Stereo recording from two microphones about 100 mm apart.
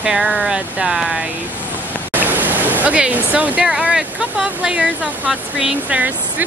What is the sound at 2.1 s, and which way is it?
Speech, 15° right (ahead or behind).